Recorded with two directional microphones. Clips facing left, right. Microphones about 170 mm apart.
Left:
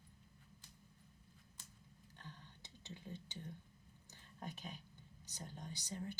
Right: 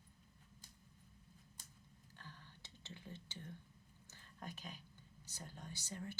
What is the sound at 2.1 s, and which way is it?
Whispering, 20° left (ahead or behind).